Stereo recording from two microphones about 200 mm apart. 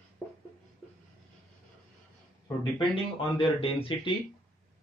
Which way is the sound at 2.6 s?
25° left (ahead or behind).